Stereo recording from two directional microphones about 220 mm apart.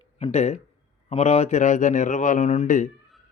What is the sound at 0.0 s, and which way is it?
Speech, 30° left (ahead or behind).